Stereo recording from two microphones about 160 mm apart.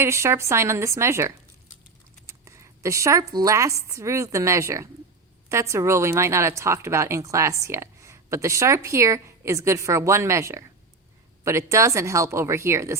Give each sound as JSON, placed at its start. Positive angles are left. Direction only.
{"t": 0.0, "sound": "a woman's voice", "side_deg": -15}